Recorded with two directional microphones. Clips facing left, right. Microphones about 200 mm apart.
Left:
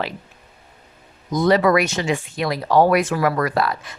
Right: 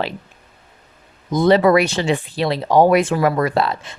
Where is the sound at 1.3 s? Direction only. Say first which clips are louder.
Right 3 dB; 25° right (ahead or behind).